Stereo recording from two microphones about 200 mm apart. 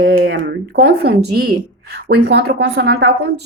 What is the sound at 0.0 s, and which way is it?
A woman's voice, 50° right (ahead or behind).